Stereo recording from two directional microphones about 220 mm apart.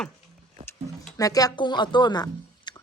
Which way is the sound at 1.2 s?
15° left (ahead or behind).